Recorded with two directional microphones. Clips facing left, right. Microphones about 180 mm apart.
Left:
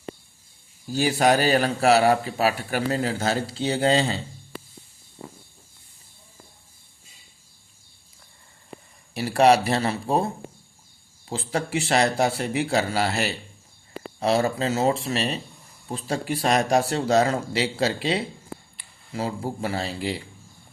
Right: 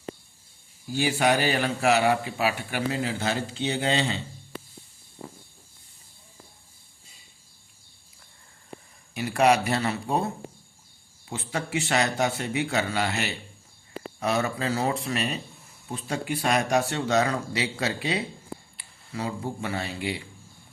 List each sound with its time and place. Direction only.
0.9 s a man's voice: 40° left (ahead or behind)
9.1 s a man's voice: 35° left (ahead or behind)
11.3 s a man's voice: 30° left (ahead or behind)